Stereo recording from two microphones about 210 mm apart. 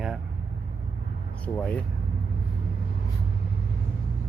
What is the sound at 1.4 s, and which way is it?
Speech, 5° left (ahead or behind).